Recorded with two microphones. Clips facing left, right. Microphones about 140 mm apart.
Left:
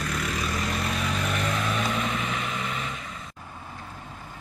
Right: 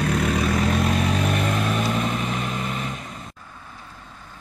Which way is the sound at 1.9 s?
40° right (ahead or behind).